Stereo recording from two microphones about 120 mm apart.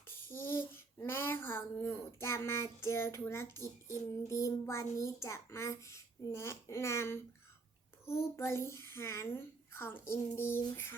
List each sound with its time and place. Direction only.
0.3 s child singing: 20° left (ahead or behind)
4.3 s a child's voice: 25° left (ahead or behind)